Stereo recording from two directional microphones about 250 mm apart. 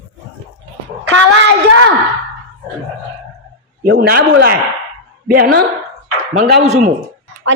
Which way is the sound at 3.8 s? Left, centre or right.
Right.